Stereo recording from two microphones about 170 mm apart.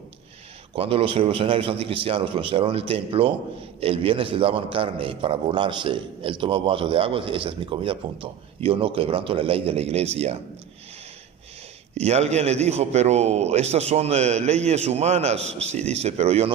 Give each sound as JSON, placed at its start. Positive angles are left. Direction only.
{"t": 0.7, "sound": "a man's voice", "side_deg": -35}
{"t": 11.9, "sound": "a man's voice", "side_deg": -40}